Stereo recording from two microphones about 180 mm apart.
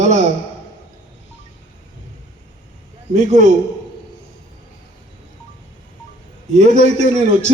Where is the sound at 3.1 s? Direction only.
40° right (ahead or behind).